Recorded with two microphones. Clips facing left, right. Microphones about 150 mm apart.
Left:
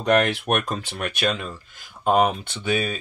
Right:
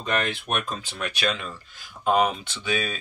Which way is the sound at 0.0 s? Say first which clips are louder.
Left 7 dB; 75° left (ahead or behind).